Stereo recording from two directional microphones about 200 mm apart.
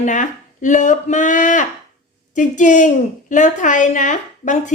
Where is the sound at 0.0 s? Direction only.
40° left (ahead or behind).